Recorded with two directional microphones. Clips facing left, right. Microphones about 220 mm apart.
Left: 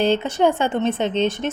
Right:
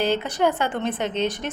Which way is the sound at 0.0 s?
25° left (ahead or behind).